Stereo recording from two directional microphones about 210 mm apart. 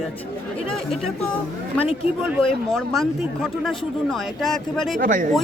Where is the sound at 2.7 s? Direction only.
Centre (ahead or behind).